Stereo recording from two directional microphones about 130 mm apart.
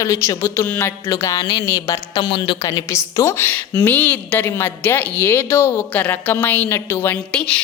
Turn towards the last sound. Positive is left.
turn(degrees=10)  # may be behind; listen again after turning